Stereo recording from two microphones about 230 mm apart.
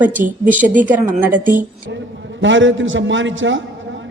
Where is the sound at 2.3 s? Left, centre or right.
Right.